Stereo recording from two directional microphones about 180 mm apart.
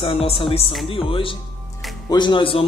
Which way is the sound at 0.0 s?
30° left (ahead or behind).